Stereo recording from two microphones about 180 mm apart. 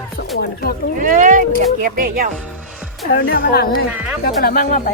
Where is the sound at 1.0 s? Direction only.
50° right (ahead or behind).